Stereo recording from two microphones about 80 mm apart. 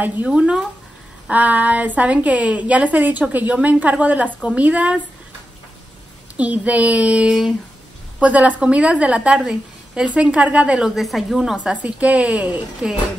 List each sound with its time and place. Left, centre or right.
0.3 s a woman's voice: centre
6.3 s a woman's voice: centre
11.0 s a woman's voice: centre